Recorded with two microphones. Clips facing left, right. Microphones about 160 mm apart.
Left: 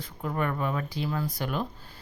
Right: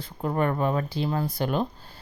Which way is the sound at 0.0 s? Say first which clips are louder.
Right 4 dB; 35° right (ahead or behind).